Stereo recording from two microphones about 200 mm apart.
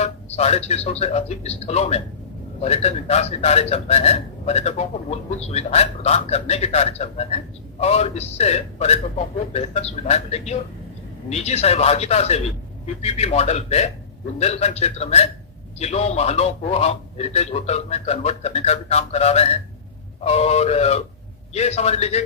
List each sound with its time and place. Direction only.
0.0 s a man's voice: 30° left (ahead or behind)